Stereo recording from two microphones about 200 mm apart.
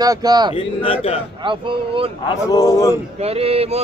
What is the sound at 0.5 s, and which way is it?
Speech, 30° left (ahead or behind).